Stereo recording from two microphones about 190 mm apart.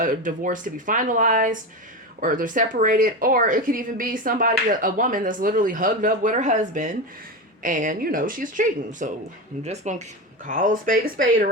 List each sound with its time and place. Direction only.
0.0 s speech: 45° right (ahead or behind)